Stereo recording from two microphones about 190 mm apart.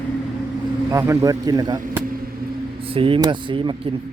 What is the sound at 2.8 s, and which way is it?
Speech, 30° right (ahead or behind).